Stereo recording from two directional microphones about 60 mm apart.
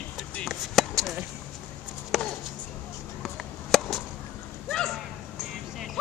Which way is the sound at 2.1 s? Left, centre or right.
Centre.